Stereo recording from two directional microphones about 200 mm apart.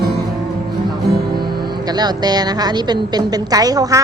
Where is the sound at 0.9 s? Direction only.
20° right (ahead or behind).